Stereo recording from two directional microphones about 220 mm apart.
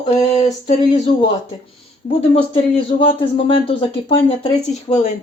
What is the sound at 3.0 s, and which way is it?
Speech, 25° left (ahead or behind).